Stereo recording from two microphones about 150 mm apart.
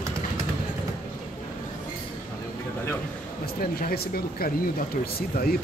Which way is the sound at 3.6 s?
80° left.